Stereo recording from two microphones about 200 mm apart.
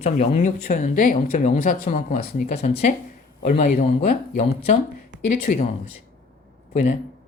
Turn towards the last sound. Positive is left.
turn(degrees=35)  # may be behind; listen again after turning